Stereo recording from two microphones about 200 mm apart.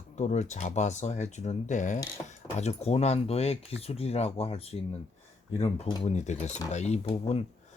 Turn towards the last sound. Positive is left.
turn(degrees=30)  # may be behind; listen again after turning